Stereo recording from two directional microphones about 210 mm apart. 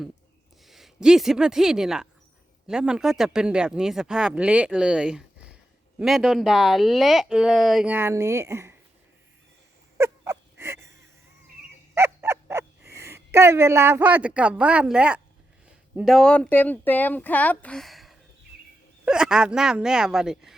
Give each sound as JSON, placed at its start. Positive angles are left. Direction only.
{"t": 0.6, "sound": "speech", "side_deg": 0}
{"t": 10.0, "sound": "gasp", "side_deg": -15}
{"t": 11.9, "sound": "speech", "side_deg": -10}